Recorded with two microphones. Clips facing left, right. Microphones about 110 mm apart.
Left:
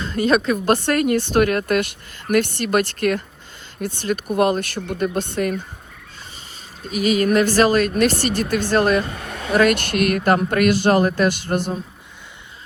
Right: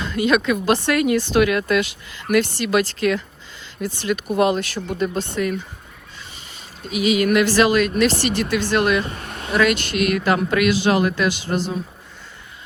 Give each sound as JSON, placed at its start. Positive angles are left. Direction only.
{"t": 0.0, "sound": "speech", "side_deg": 40}
{"t": 6.8, "sound": "speech", "side_deg": 40}